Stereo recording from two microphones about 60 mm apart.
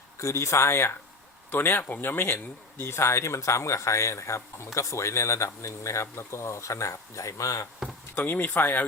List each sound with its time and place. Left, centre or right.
0.2 s speech: left
1.5 s speech: left
8.1 s speech: left